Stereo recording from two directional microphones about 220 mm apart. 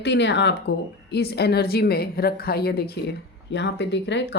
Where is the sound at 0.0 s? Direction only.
55° left (ahead or behind).